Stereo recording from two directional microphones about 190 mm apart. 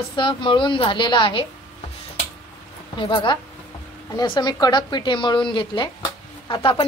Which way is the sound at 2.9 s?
25° left (ahead or behind).